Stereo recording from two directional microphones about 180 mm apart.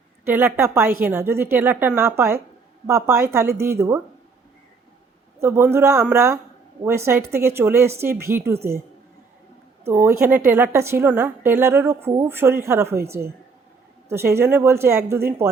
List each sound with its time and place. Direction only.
0.3 s a woman's voice: 10° right (ahead or behind)
5.4 s a woman's voice: 15° right (ahead or behind)
9.8 s a woman's voice: 15° right (ahead or behind)